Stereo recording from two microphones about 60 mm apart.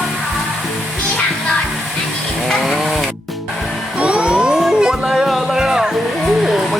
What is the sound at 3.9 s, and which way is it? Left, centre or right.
Music, centre.